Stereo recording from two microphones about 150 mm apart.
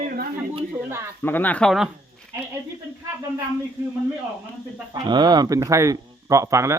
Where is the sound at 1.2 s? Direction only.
15° left (ahead or behind).